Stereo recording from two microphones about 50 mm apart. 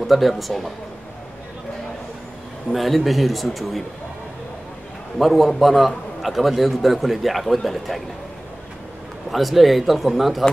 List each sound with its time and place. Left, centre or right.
0.0 s a man's voice: centre
2.7 s a man's voice: centre
5.2 s a man's voice: centre
9.3 s a man's voice: centre